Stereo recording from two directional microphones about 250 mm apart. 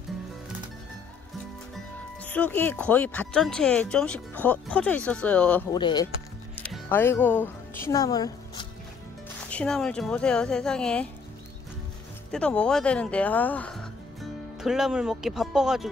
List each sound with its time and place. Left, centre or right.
2.2 s speech: centre
5.8 s speech: centre
6.5 s speech: centre
9.5 s speech: centre
12.3 s speech: centre